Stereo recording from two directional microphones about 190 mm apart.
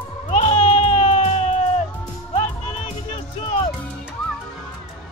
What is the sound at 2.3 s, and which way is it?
Music, 35° left (ahead or behind).